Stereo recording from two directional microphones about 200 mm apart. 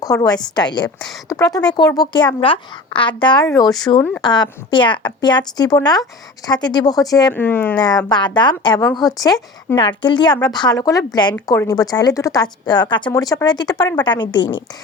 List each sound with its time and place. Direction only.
0.0 s a woman's voice: 20° left (ahead or behind)
0.9 s a woman's voice: centre (ahead or behind)
1.4 s a woman's voice: 20° left (ahead or behind)
7.8 s a woman's voice: 20° left (ahead or behind)